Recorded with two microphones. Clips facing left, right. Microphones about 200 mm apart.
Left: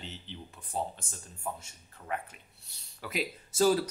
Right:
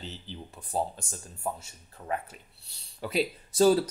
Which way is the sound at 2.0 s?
40° right (ahead or behind).